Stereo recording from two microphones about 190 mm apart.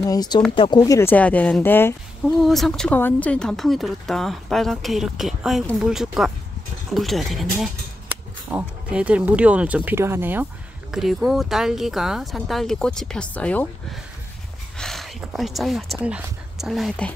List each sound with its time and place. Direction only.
0.0 s speech: 20° left (ahead or behind)
14.8 s speech: centre (ahead or behind)